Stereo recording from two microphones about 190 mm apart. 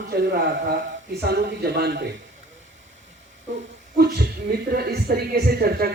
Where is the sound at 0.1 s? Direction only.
55° right (ahead or behind).